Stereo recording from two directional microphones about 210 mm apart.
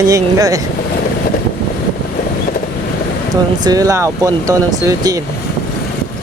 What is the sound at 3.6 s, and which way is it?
Speech, 15° right (ahead or behind).